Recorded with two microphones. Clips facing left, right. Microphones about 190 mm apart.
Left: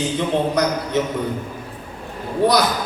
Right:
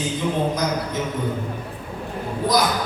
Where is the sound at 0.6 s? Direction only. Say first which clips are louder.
Left 5 dB; 70° left (ahead or behind).